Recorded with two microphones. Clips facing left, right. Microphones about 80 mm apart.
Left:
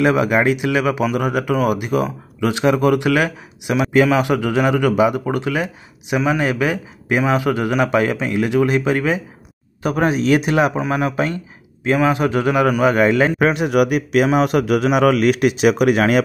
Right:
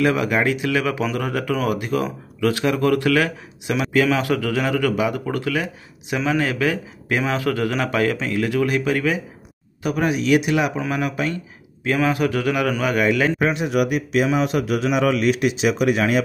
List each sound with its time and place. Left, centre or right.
0.0 s a man's voice: left
9.8 s speech: left
10.8 s a man's voice: left
13.4 s a man's voice: left